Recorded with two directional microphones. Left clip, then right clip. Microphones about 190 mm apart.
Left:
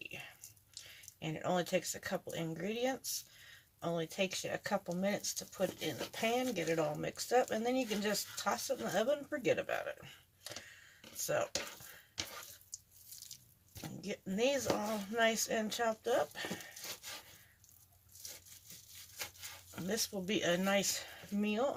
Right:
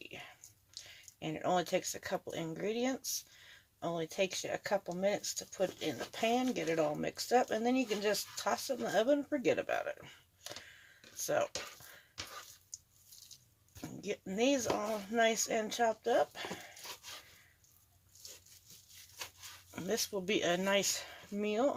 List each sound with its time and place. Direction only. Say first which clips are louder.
0.7 s speech: right 2 dB; 30° right (ahead or behind)
14.0 s speech: right 1 dB; 35° right (ahead or behind)
19.7 s speech: right 3 dB; 30° right (ahead or behind)